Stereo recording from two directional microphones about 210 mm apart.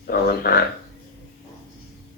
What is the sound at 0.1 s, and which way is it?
Speech, 50° left (ahead or behind).